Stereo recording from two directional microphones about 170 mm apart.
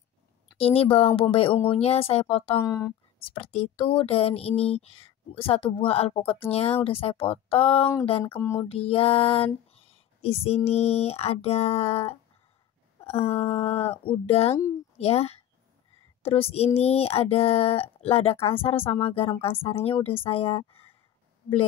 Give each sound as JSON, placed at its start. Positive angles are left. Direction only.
{"t": 0.6, "sound": "speech", "side_deg": 35}
{"t": 2.5, "sound": "speech", "side_deg": 20}
{"t": 3.5, "sound": "speech", "side_deg": 35}
{"t": 8.4, "sound": "a sound", "side_deg": 15}
{"t": 8.6, "sound": "speech", "side_deg": 35}